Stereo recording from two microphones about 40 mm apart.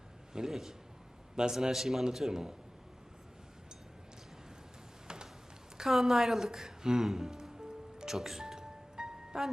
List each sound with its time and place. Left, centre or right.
0.3 s a man's voice: centre
5.0 s a sound: centre
5.7 s music: centre